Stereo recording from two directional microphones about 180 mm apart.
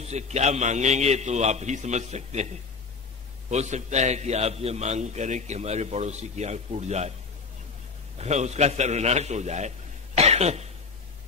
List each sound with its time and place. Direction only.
0.0 s a man's voice: 40° right (ahead or behind)
3.4 s a man's voice: 40° right (ahead or behind)
8.2 s a man's voice: 40° right (ahead or behind)